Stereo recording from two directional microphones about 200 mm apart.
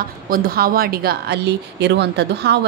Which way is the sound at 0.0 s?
45° right (ahead or behind).